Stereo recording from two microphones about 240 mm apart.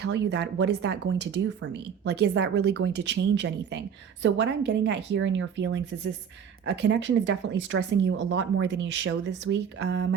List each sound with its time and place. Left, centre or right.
0.0 s speech: right